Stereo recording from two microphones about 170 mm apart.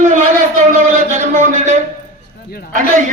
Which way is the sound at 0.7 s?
45° right (ahead or behind).